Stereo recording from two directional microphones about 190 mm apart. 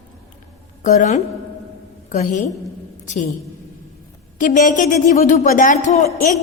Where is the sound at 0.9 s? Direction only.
40° left (ahead or behind).